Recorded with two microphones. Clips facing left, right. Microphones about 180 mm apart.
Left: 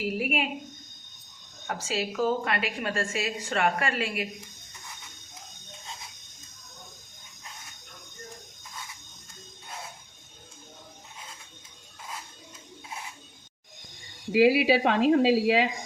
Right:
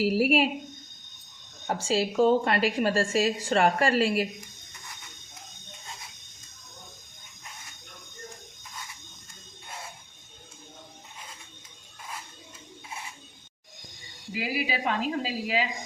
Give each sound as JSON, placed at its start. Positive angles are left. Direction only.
{"t": 0.0, "sound": "a woman's voice", "side_deg": -35}
{"t": 1.6, "sound": "a woman's voice", "side_deg": -30}
{"t": 14.3, "sound": "speech", "side_deg": 75}